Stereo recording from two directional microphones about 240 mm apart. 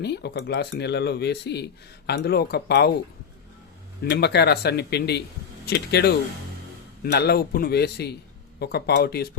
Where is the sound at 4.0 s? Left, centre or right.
Left.